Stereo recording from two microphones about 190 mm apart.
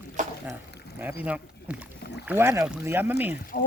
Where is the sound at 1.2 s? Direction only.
5° right (ahead or behind).